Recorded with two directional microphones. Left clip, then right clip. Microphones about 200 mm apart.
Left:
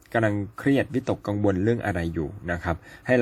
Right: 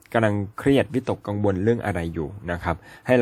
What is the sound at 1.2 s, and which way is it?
A man's voice, 5° right (ahead or behind).